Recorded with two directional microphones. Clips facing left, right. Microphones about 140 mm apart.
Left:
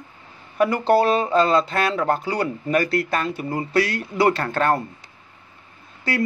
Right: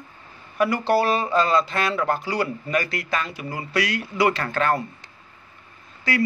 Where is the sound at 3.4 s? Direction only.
30° left (ahead or behind).